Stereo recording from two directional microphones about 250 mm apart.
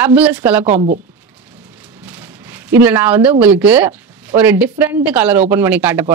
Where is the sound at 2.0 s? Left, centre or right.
Centre.